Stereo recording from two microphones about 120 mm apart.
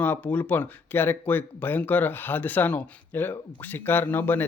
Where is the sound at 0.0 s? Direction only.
15° left (ahead or behind).